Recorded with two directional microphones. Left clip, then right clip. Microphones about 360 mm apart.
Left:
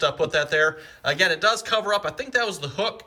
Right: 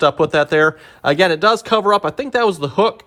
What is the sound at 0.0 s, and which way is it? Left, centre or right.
Speech, centre.